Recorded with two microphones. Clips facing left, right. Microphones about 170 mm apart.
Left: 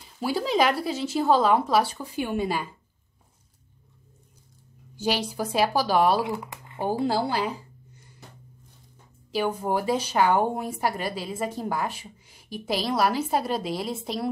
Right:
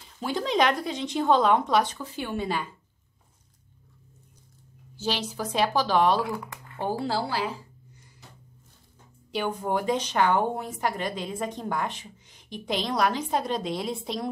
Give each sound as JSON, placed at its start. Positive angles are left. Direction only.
{"t": 0.2, "sound": "speech", "side_deg": 5}
{"t": 4.9, "sound": "speech", "side_deg": 10}
{"t": 6.2, "sound": "speech", "side_deg": 20}
{"t": 9.3, "sound": "speech", "side_deg": 5}